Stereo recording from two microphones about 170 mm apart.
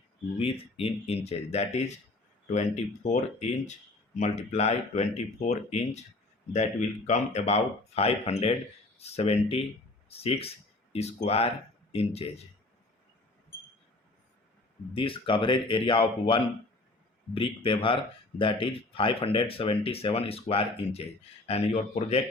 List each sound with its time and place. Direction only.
0.3 s speech: 35° left (ahead or behind)
14.9 s speech: 30° left (ahead or behind)